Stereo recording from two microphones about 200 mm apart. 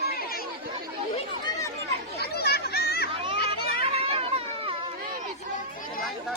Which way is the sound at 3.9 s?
30° right (ahead or behind).